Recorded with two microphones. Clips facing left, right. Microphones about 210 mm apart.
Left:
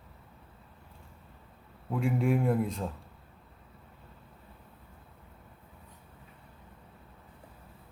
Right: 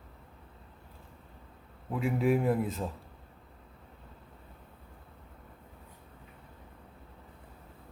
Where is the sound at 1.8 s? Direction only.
Centre (ahead or behind).